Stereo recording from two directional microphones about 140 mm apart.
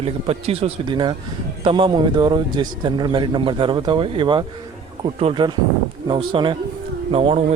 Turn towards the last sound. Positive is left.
turn(degrees=-40)  # may be behind; listen again after turning